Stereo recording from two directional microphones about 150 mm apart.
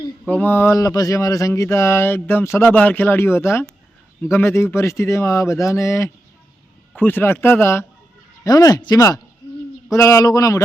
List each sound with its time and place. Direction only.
0.3 s speech: 10° left (ahead or behind)